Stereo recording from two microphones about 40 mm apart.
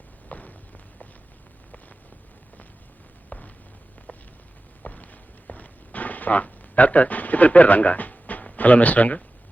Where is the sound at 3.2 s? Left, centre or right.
Left.